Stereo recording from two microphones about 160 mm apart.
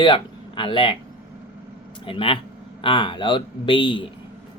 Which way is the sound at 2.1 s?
35° left (ahead or behind).